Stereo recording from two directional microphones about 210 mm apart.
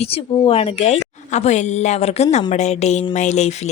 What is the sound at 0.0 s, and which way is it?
A woman's voice, 25° left (ahead or behind).